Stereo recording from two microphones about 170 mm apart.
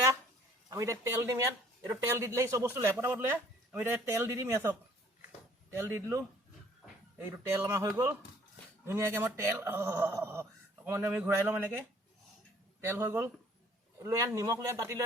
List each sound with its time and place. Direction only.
0.7 s a man's voice: 15° right (ahead or behind)
12.8 s a man's voice: 15° right (ahead or behind)